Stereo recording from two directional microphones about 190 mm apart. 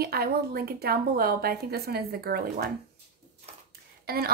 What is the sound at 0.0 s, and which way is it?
Speech, 55° right (ahead or behind).